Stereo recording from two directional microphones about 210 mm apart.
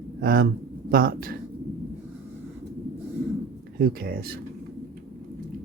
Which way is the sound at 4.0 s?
45° right (ahead or behind).